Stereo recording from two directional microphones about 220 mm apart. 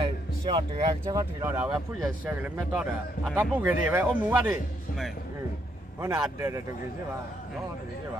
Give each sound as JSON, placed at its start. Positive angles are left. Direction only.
{"t": 0.0, "sound": "a man's voice", "side_deg": -20}
{"t": 5.9, "sound": "speech", "side_deg": -10}